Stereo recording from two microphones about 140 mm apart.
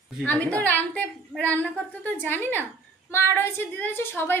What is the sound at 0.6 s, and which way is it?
A woman's voice, 10° left (ahead or behind).